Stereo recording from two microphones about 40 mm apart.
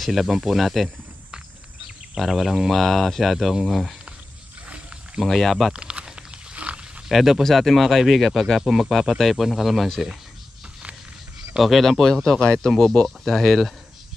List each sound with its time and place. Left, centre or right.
0.0 s speech: centre
2.1 s speech: centre
2.7 s speech: centre
4.6 s wild animals: right
5.2 s speech: centre
5.7 s a sound: right
7.1 s speech: centre
11.5 s speech: centre
12.0 s speech: centre